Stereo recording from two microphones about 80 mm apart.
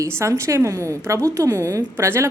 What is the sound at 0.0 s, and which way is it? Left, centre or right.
Speech, right.